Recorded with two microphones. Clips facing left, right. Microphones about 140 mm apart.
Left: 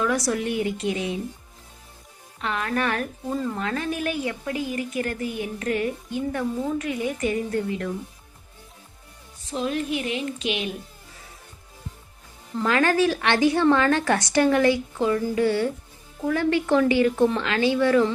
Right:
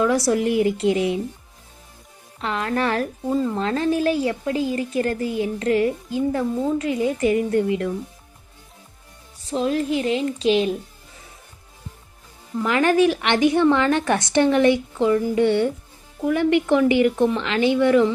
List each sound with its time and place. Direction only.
0.0 s a woman's voice: 25° right (ahead or behind)
2.4 s a woman's voice: 30° right (ahead or behind)
9.4 s a woman's voice: 30° right (ahead or behind)
12.6 s a woman's voice: 20° right (ahead or behind)